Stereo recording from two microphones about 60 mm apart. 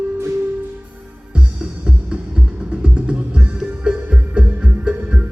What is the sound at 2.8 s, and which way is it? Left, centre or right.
Music, centre.